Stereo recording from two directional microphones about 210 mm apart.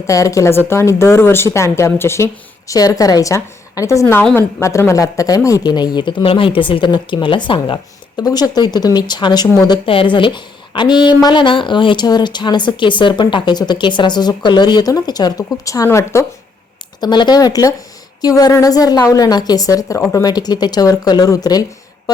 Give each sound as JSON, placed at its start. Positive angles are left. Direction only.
{"t": 0.1, "sound": "a woman's voice", "side_deg": 15}